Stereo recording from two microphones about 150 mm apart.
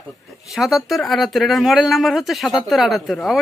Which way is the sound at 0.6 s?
Centre (ahead or behind).